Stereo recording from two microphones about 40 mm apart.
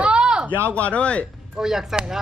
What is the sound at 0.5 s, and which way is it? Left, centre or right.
Speech, right.